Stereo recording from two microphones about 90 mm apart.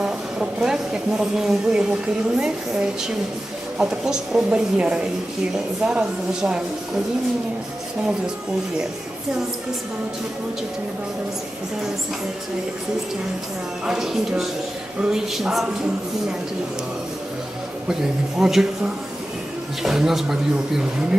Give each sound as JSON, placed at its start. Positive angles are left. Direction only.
{"t": 0.0, "sound": "a woman's voice", "side_deg": -10}
{"t": 13.8, "sound": "speech", "side_deg": -5}
{"t": 17.8, "sound": "speech", "side_deg": -5}
{"t": 19.8, "sound": "speech", "side_deg": -5}